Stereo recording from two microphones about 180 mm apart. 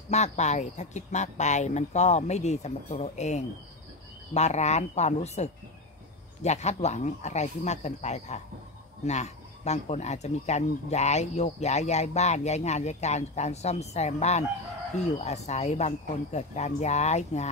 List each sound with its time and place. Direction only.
0.1 s speech: 40° left (ahead or behind)